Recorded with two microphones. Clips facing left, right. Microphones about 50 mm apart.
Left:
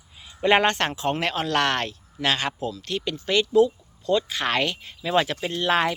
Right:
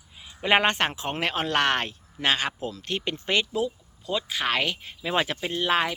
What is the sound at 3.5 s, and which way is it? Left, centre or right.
Speech, centre.